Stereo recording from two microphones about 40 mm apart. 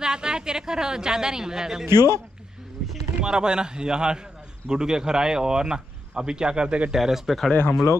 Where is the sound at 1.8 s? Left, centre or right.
Right.